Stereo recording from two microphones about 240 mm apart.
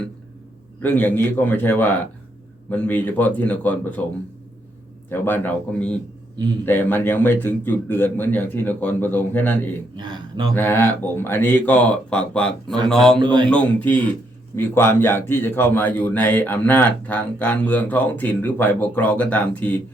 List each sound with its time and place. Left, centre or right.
0.8 s a man's voice: centre
5.1 s a man's voice: centre
10.0 s a sound: centre
10.5 s a man's voice: centre
12.6 s speech: centre
12.9 s a man's voice: centre
13.1 s a man's voice: centre
13.5 s a man's voice: centre